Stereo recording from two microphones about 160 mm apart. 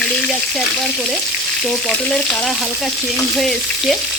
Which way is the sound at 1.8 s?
5° left (ahead or behind).